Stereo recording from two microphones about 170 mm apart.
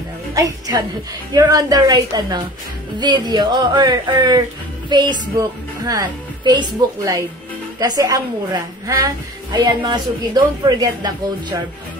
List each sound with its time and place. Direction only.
0.3 s a woman's voice: 20° right (ahead or behind)